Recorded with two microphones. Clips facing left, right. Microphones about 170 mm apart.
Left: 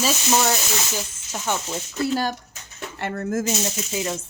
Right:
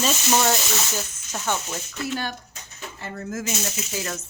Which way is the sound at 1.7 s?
30° left (ahead or behind).